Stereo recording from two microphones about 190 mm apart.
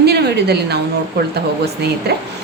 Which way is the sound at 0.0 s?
60° right (ahead or behind).